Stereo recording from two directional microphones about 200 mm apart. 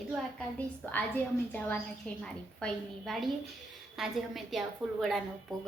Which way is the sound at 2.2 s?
Centre (ahead or behind).